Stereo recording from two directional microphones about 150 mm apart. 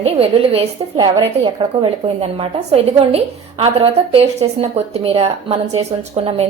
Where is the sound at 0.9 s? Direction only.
25° right (ahead or behind).